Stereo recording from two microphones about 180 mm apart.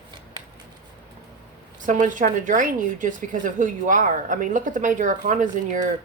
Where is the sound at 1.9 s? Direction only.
45° right (ahead or behind).